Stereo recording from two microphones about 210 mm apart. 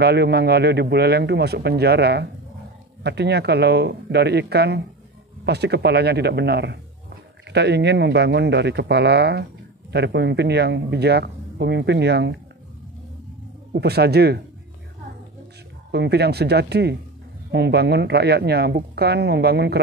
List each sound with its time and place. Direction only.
0.0 s speech: 50° right (ahead or behind)
13.7 s speech: 50° right (ahead or behind)
15.9 s speech: 50° right (ahead or behind)